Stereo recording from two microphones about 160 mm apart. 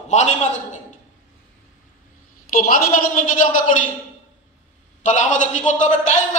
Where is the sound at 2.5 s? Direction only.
65° left (ahead or behind).